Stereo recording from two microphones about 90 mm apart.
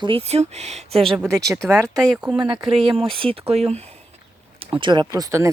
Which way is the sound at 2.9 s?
80° right.